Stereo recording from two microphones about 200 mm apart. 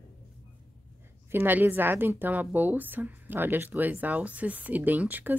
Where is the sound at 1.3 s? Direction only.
10° right (ahead or behind).